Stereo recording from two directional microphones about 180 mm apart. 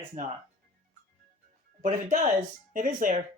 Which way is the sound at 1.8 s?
45° right (ahead or behind).